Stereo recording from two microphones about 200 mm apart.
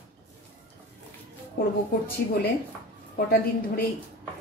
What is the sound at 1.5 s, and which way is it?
A woman's voice, 45° left (ahead or behind).